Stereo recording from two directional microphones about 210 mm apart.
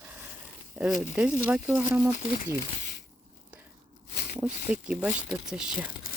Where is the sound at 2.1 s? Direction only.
40° left (ahead or behind).